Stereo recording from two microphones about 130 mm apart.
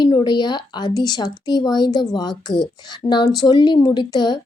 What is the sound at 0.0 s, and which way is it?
Speech, 35° left (ahead or behind).